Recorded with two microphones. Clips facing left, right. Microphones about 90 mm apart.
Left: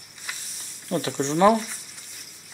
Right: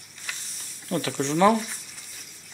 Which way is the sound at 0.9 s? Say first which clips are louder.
Left 1 dB; 20° left (ahead or behind).